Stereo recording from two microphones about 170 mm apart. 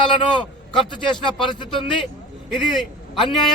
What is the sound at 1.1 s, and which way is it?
Speech, 25° left (ahead or behind).